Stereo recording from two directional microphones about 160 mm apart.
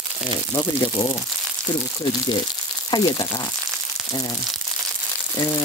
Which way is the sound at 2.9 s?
25° left (ahead or behind).